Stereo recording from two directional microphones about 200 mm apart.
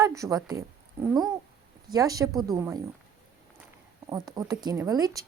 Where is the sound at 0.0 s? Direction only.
15° right (ahead or behind).